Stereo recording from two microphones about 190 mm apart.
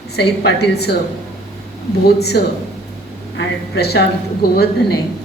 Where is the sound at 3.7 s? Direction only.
60° left (ahead or behind).